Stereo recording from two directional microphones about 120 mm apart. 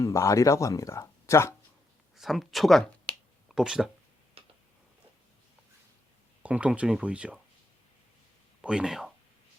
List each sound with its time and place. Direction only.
0.0 s speech: 25° left (ahead or behind)
2.1 s finger snapping: centre (ahead or behind)
6.4 s speech: 10° right (ahead or behind)
8.6 s speech: 5° right (ahead or behind)